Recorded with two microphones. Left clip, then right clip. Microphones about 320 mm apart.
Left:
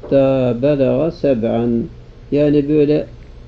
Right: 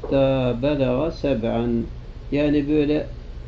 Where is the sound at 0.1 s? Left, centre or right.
Left.